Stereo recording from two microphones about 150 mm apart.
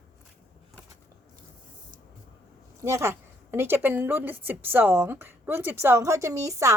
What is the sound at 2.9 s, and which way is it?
A woman's voice, 20° right (ahead or behind).